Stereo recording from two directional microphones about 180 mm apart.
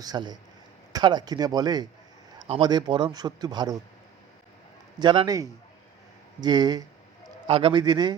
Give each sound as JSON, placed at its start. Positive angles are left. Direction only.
{"t": 0.0, "sound": "a man's voice", "side_deg": -20}
{"t": 4.9, "sound": "a man's voice", "side_deg": -25}
{"t": 7.4, "sound": "a man's voice", "side_deg": -30}